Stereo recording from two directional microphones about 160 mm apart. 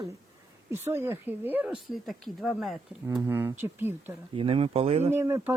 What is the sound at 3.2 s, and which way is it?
Speech, 15° right (ahead or behind).